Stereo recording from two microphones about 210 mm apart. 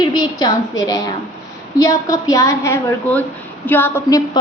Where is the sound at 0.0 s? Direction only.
20° left (ahead or behind).